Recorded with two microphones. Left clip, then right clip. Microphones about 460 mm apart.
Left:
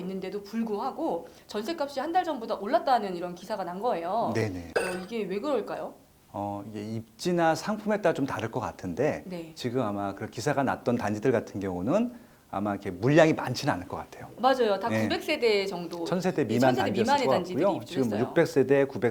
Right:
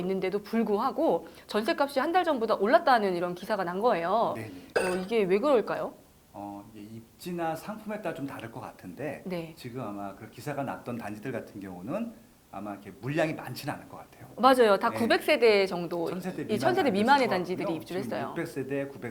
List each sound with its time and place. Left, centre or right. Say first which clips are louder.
0.1 s speech: right 6 dB; right
4.7 s speech: right 4 dB; centre
5.0 s speech: right 6 dB; right
7.3 s speech: left 8 dB; left
14.4 s speech: right 3 dB; right
15.9 s speech: left 3 dB; left
16.5 s speech: right 1 dB; right
18.3 s speech: left 11 dB; left